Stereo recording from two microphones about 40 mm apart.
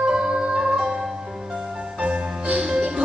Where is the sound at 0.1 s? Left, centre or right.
Right.